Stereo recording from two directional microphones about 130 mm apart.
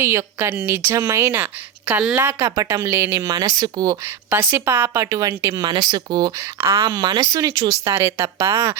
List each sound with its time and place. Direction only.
0.0 s speech: 20° right (ahead or behind)
2.1 s speech: 20° right (ahead or behind)
6.4 s speech: 20° right (ahead or behind)